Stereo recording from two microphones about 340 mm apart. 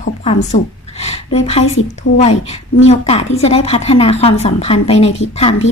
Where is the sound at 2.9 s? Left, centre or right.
Centre.